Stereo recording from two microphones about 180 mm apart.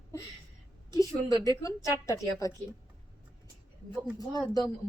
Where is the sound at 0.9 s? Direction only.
20° left (ahead or behind).